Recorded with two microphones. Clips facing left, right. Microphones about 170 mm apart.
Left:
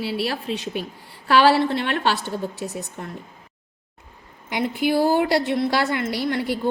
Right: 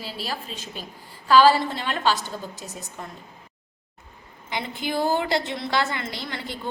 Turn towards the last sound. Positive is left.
turn(degrees=60)  # may be behind; listen again after turning